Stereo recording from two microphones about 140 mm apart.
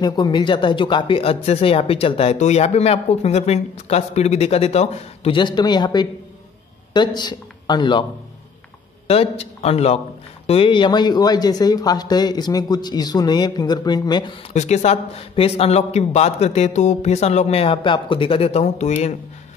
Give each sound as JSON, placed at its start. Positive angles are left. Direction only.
{"t": 0.0, "sound": "speech", "side_deg": 30}
{"t": 9.0, "sound": "a man's voice", "side_deg": 45}
{"t": 14.5, "sound": "speech", "side_deg": 55}